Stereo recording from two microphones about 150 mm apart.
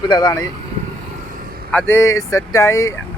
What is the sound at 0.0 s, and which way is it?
Speech, 25° left (ahead or behind).